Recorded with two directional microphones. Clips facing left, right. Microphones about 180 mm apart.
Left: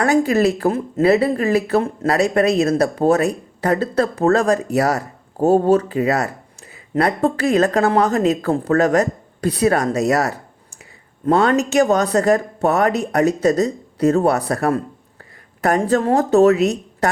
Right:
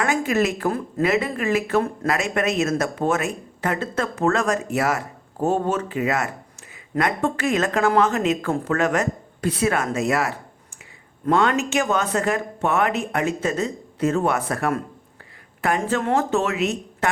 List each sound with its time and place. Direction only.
0.0 s a woman's voice: 35° left (ahead or behind)